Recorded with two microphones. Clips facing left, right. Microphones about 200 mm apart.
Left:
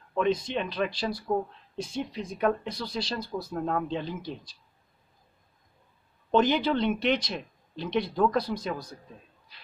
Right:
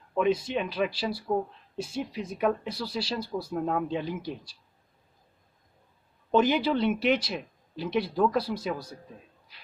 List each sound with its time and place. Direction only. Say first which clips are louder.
0.1 s speech: right 1 dB; 5° right (ahead or behind)
6.3 s speech: even; 10° right (ahead or behind)